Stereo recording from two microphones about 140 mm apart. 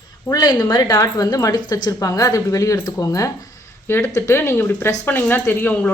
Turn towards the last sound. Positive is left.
turn(degrees=15)  # may be behind; listen again after turning